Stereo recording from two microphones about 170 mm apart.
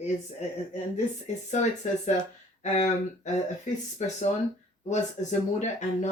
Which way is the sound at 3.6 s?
45° left (ahead or behind).